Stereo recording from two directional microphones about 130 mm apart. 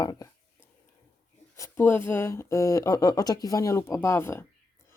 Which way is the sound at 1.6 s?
15° left (ahead or behind).